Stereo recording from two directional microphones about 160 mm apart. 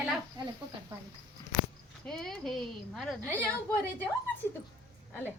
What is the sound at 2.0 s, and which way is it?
A woman's voice, 5° left (ahead or behind).